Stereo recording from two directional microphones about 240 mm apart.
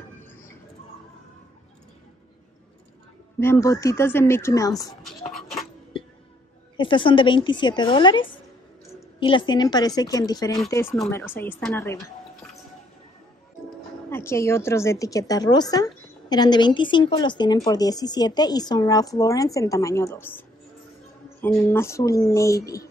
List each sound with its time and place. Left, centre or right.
3.3 s a woman's voice: centre
5.9 s music: left
6.8 s a woman's voice: left
14.1 s a woman's voice: centre